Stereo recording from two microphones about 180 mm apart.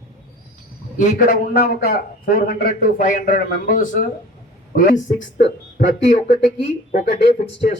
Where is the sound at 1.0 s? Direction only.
50° left (ahead or behind).